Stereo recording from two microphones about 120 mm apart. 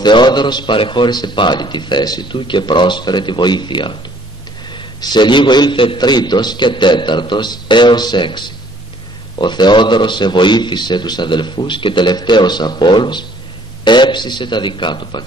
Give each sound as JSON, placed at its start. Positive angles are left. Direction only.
{"t": 0.0, "sound": "a man's voice", "side_deg": 40}